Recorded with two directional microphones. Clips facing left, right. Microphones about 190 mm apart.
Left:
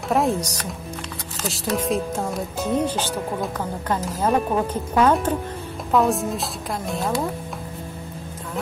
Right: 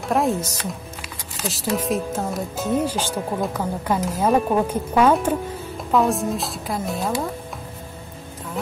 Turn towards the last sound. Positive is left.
turn(degrees=0)  # may be behind; listen again after turning